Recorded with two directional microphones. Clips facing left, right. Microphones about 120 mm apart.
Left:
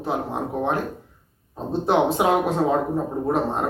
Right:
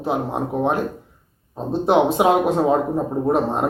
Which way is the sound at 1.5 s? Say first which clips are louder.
Right 3 dB; 15° right (ahead or behind).